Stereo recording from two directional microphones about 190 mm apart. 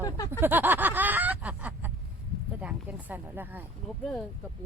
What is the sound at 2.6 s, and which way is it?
Speech, 5° right (ahead or behind).